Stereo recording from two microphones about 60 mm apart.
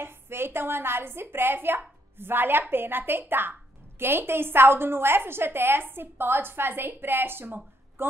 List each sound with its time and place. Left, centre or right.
0.0 s a woman's voice: right